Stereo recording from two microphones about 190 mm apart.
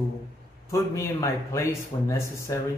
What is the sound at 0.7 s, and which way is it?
A man's voice, 15° left (ahead or behind).